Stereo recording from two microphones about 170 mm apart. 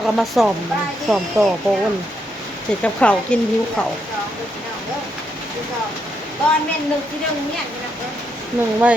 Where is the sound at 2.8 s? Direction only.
5° left (ahead or behind).